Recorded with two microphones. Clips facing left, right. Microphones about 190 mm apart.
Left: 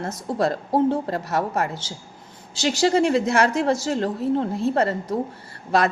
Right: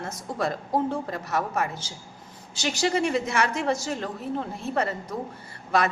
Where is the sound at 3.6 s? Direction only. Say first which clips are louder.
Left 5 dB; 35° left (ahead or behind).